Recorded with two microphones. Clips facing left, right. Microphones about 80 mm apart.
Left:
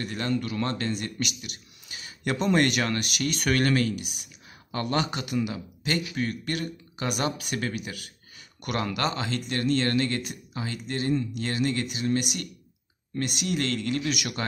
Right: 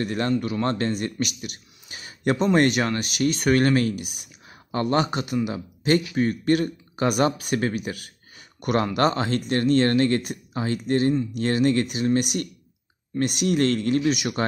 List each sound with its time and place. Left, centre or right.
0.0 s speech: right
0.3 s speech: right
4.6 s speech: right